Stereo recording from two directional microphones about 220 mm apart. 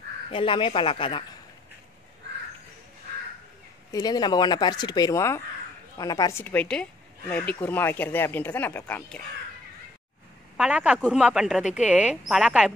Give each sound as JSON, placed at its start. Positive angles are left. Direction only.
{"t": 0.3, "sound": "speech", "side_deg": 25}
{"t": 3.9, "sound": "a woman's voice", "side_deg": 20}
{"t": 10.6, "sound": "speech", "side_deg": -5}